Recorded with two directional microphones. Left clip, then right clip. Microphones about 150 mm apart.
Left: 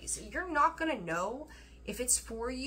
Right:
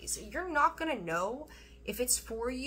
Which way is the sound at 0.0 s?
20° right (ahead or behind).